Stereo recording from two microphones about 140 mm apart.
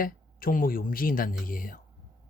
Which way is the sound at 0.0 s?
90° left.